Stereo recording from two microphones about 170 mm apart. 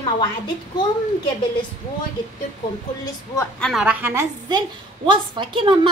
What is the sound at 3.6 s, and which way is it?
A woman's voice, 5° right (ahead or behind).